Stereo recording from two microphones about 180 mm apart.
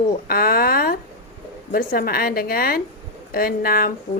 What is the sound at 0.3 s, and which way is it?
A woman's voice, 55° left (ahead or behind).